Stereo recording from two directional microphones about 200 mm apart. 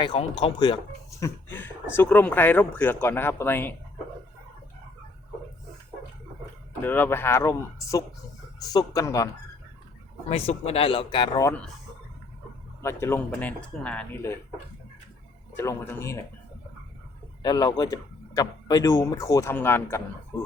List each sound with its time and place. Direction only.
0.0 s speech: 30° left (ahead or behind)
1.2 s speech: 10° left (ahead or behind)
6.8 s speech: 10° left (ahead or behind)
10.2 s speech: 30° left (ahead or behind)
12.8 s speech: 15° left (ahead or behind)
15.5 s speech: 15° left (ahead or behind)
17.4 s speech: 20° left (ahead or behind)